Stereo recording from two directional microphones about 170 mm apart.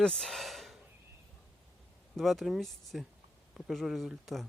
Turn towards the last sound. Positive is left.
turn(degrees=0)  # may be behind; listen again after turning